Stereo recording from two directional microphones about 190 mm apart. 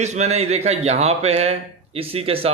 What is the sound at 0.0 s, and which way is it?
A man's voice, 35° right (ahead or behind).